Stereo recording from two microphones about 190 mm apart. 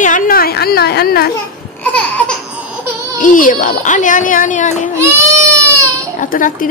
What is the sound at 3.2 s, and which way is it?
A woman's voice, 45° left (ahead or behind).